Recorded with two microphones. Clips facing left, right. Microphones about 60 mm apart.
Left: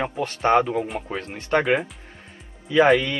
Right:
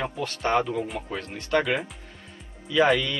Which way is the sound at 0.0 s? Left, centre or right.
Left.